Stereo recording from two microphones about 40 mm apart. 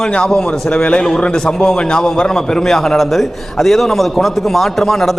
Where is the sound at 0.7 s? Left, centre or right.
Left.